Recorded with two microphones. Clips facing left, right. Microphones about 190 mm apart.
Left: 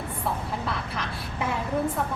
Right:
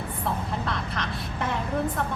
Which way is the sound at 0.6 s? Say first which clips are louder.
Right 1 dB; 5° left (ahead or behind).